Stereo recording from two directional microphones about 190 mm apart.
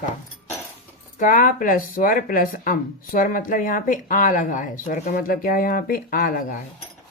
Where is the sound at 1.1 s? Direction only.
45° left (ahead or behind).